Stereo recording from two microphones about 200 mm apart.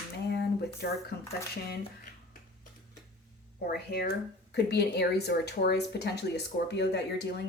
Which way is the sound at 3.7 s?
50° left (ahead or behind).